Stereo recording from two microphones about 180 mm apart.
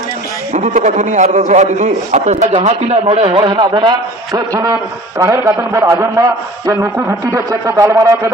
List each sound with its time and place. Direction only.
0.5 s a man's voice: 45° right (ahead or behind); by 8.3 s 15° right (ahead or behind)